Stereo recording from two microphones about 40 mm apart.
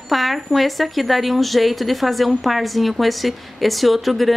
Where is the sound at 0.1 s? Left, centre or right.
Centre.